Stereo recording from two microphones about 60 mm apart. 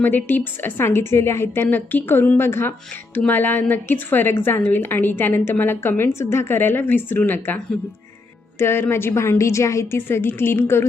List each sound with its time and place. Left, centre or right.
0.0 s a woman's voice: left
3.2 s a woman's voice: left